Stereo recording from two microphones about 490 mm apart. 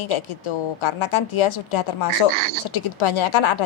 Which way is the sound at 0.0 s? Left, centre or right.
Left.